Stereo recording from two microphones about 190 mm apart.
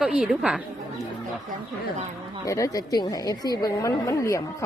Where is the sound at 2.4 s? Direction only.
15° left (ahead or behind).